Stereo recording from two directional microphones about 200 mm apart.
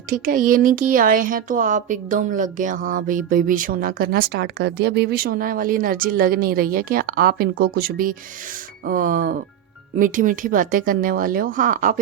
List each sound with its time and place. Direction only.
0.1 s speech: 45° right (ahead or behind)